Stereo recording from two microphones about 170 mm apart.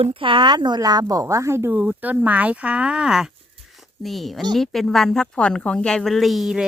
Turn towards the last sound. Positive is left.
turn(degrees=0)  # may be behind; listen again after turning